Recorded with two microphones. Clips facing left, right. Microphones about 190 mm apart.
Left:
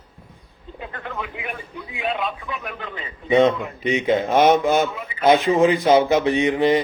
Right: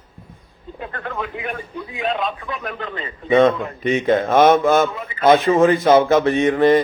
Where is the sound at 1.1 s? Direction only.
50° right (ahead or behind).